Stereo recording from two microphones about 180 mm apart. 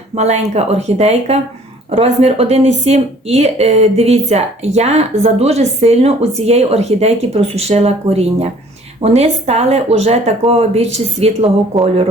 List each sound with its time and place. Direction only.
0.2 s speech: 35° right (ahead or behind)